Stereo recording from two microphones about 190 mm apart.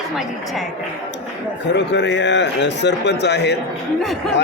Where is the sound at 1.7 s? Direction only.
65° left (ahead or behind).